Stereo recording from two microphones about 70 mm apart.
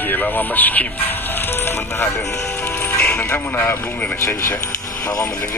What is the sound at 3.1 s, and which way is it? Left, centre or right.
Speech, left.